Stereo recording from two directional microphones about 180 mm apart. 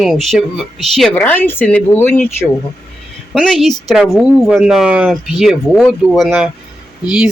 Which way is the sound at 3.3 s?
Centre (ahead or behind).